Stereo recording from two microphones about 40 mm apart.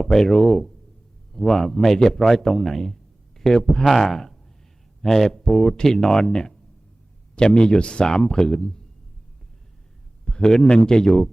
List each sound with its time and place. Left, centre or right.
0.0 s a man's voice: centre
10.2 s speech: centre